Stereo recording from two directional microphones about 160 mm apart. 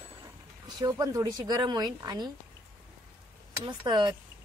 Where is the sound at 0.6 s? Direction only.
20° right (ahead or behind).